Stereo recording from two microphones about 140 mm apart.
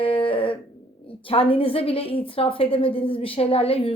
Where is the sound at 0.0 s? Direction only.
40° left (ahead or behind).